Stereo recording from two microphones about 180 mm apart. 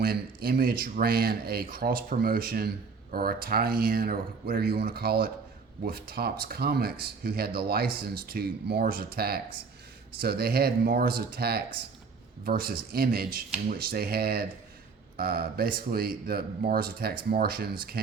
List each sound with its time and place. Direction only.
0.0 s speech: 55° right (ahead or behind)